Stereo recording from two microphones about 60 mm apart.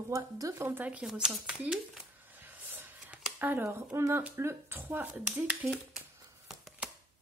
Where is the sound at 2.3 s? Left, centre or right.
Right.